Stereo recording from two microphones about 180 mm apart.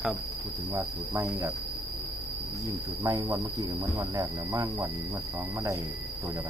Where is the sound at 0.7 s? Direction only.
10° right (ahead or behind).